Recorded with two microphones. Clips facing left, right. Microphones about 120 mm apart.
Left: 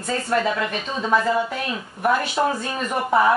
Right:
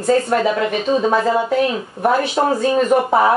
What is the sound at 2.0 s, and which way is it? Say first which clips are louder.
Speech: right 4 dB; 30° right (ahead or behind).